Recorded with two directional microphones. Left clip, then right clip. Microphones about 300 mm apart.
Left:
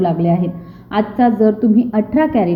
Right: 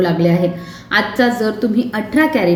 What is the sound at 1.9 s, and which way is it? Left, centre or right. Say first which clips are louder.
Speech: right 3 dB; centre.